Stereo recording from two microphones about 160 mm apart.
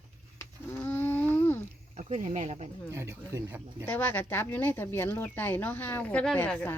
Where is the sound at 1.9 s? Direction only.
40° right (ahead or behind).